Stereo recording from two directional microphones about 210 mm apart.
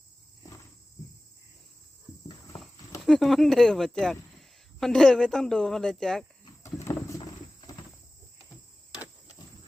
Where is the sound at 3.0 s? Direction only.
Centre (ahead or behind).